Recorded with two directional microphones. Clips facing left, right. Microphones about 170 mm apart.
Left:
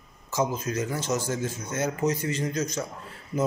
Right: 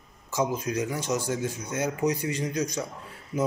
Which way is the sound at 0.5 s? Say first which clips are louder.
Right 1 dB; 15° right (ahead or behind).